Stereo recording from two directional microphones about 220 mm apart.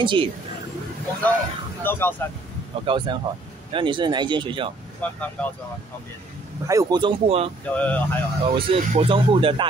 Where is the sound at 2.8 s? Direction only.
20° right (ahead or behind).